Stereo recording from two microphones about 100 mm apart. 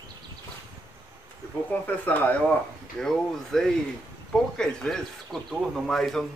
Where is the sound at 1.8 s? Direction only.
20° left (ahead or behind).